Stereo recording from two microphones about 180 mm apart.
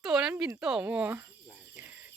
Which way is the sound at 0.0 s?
5° right (ahead or behind).